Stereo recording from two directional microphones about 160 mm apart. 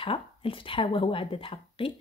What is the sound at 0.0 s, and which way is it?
A woman's voice, 35° left (ahead or behind).